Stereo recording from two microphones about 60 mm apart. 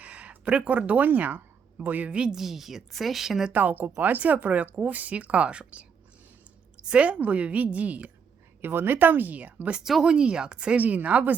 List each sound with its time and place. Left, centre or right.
0.0 s speech: right
2.0 s speech: centre
2.3 s a woman's voice: centre
3.5 s speech: right
6.8 s speech: centre
8.6 s speech: right
9.8 s speech: centre
10.8 s speech: right